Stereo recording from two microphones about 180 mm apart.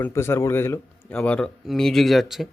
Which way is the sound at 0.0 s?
15° left (ahead or behind).